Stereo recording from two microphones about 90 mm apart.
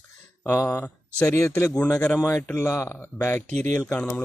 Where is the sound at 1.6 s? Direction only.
10° left (ahead or behind).